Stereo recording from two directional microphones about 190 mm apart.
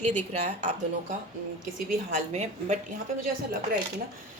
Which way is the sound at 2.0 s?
35° right (ahead or behind).